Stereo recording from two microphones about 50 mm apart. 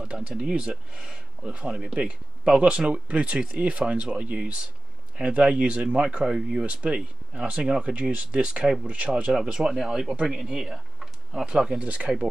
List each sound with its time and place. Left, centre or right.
0.3 s speech: right
9.3 s speech: centre
10.1 s speech: right
10.4 s a sound: centre
11.4 s speech: centre
11.8 s speech: right